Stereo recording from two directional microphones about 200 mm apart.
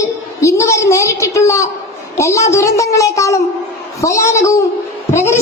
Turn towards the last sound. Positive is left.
turn(degrees=15)  # may be behind; listen again after turning